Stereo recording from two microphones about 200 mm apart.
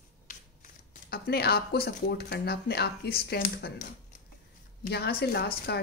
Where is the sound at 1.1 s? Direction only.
50° left (ahead or behind).